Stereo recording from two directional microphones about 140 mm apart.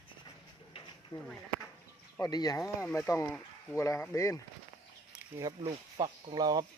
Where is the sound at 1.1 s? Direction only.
30° left (ahead or behind).